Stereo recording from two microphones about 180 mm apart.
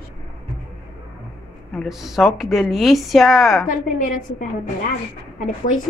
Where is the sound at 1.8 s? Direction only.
Centre (ahead or behind).